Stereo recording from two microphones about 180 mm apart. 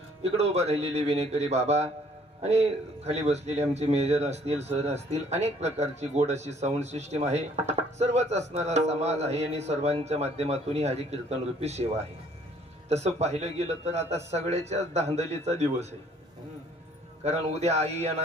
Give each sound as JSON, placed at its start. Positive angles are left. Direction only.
{"t": 0.2, "sound": "a man's voice", "side_deg": -35}
{"t": 12.9, "sound": "a man's voice", "side_deg": -35}
{"t": 17.2, "sound": "a man's voice", "side_deg": -35}